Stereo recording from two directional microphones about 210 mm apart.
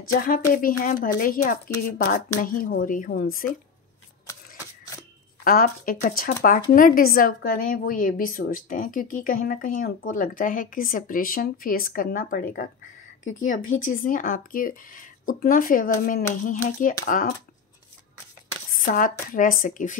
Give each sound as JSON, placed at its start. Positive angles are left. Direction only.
{"t": 0.1, "sound": "a woman's voice", "side_deg": 40}
{"t": 4.3, "sound": "shuffling cards", "side_deg": 15}
{"t": 5.4, "sound": "a woman's voice", "side_deg": 40}
{"t": 18.9, "sound": "a woman's voice", "side_deg": 40}